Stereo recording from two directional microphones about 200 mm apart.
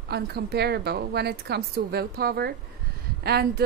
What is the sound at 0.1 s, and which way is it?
A woman's voice, 55° right (ahead or behind).